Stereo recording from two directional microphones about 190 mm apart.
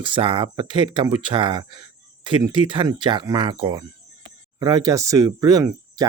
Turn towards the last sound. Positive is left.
turn(degrees=-20)  # may be behind; listen again after turning